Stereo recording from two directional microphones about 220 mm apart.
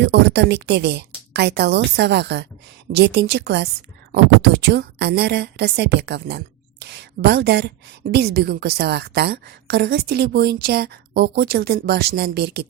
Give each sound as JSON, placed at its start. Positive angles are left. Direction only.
{"t": 0.0, "sound": "a woman's voice", "side_deg": -50}